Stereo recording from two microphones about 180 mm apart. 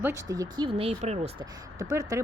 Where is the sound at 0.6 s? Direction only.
35° right (ahead or behind).